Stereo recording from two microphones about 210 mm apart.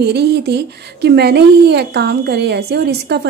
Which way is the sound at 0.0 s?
50° right (ahead or behind).